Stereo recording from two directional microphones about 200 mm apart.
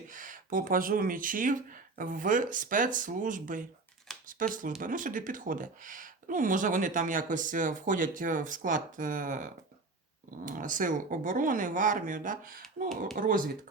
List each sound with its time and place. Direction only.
0.1 s speech: 40° right (ahead or behind)